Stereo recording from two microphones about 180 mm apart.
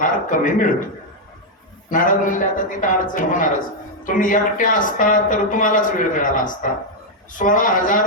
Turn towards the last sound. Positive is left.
turn(degrees=50)  # may be behind; listen again after turning